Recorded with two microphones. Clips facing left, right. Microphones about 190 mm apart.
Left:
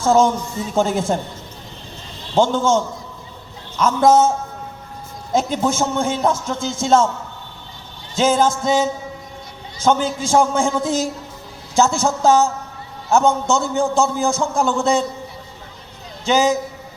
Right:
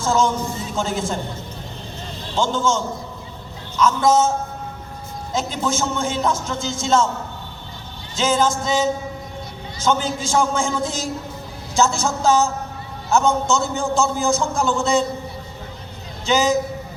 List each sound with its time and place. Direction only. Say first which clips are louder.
0.0 s a man's voice: left 4 dB; 55° left (ahead or behind)
2.4 s a man's voice: left 4 dB; 55° left (ahead or behind)
5.3 s a man's voice: left 4 dB; 55° left (ahead or behind)
8.1 s a man's voice: left 3 dB; 55° left (ahead or behind)
10.0 s a man's voice: left 4 dB; 55° left (ahead or behind)
16.2 s a man's voice: left 2 dB; 55° left (ahead or behind)